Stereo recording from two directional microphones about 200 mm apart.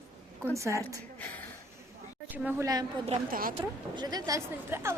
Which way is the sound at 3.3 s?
45° right (ahead or behind).